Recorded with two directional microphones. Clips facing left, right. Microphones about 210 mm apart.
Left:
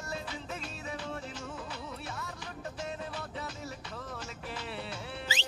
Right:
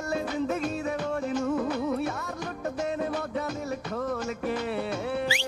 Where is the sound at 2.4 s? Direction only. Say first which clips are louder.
Right 10 dB; 65° right (ahead or behind).